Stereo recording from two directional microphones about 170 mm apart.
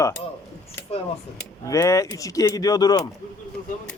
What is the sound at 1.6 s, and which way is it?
Speech, 20° left (ahead or behind).